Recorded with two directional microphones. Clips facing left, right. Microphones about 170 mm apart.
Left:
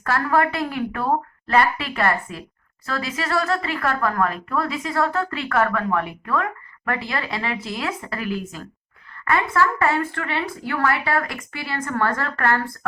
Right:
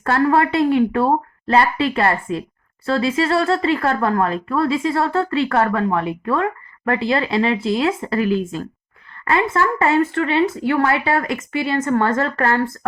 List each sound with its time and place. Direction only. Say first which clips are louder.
0.0 s speech: right 4 dB; 25° right (ahead or behind)